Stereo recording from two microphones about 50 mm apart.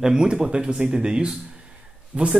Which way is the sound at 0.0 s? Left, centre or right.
Centre.